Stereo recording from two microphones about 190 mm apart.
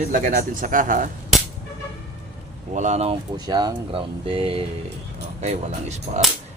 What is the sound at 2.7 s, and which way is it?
Speech, 40° right (ahead or behind).